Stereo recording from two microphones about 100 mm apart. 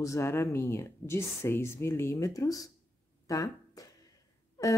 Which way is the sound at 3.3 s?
35° left (ahead or behind).